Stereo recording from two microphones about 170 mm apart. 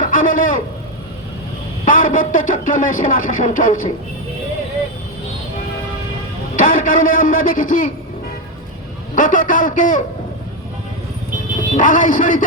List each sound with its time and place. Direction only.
0.0 s a sound: 50° left (ahead or behind)
1.8 s speech: 50° left (ahead or behind)
6.6 s speech: 50° left (ahead or behind)
9.1 s speech: 50° left (ahead or behind)
11.7 s speech: 50° left (ahead or behind)